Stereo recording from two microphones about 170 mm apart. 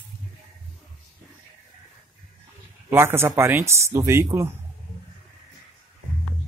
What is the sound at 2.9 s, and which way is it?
Speech, 15° right (ahead or behind).